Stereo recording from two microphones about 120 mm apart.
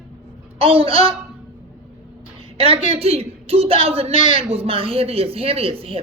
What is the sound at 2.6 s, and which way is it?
A man's voice, 55° right (ahead or behind).